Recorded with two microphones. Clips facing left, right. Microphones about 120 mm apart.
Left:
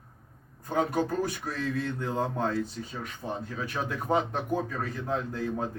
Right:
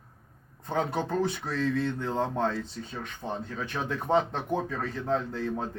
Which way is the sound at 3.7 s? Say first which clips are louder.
Right 2 dB; 10° left (ahead or behind).